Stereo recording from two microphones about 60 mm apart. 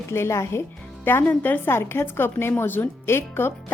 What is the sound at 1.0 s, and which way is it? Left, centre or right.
A woman's voice, left.